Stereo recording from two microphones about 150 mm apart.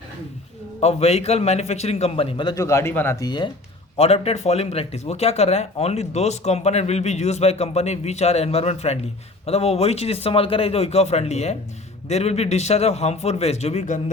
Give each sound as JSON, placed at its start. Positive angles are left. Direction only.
{"t": 0.8, "sound": "speech", "side_deg": 45}
{"t": 2.6, "sound": "speech", "side_deg": 20}
{"t": 3.2, "sound": "speech", "side_deg": 30}
{"t": 3.9, "sound": "speech", "side_deg": 45}